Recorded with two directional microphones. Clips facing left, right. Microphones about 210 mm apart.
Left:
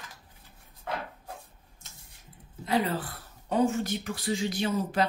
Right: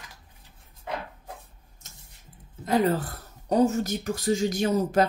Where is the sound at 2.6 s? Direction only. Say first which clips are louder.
Right 5 dB; 45° right (ahead or behind).